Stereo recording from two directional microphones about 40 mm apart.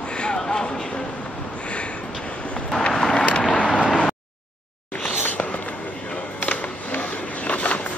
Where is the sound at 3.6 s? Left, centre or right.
Right.